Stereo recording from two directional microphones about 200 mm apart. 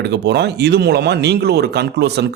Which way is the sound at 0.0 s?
60° right (ahead or behind).